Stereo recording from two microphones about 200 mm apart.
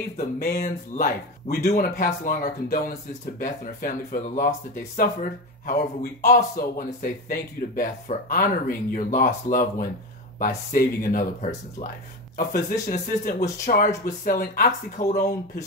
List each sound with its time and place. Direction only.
0.4 s speech: 45° left (ahead or behind)
12.8 s speech: 35° left (ahead or behind)